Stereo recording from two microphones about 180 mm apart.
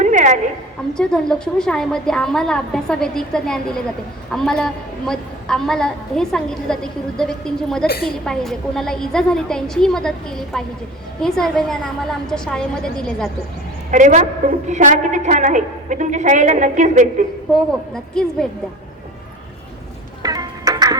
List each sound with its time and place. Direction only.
0.0 s a sound: 40° right (ahead or behind)
0.9 s a woman's voice: 5° left (ahead or behind)
13.9 s a woman's voice: 45° right (ahead or behind)
17.9 s a woman's voice: 5° left (ahead or behind)
20.2 s music: 20° right (ahead or behind)